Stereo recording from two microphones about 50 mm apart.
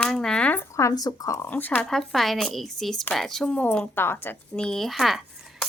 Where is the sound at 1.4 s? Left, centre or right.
Left.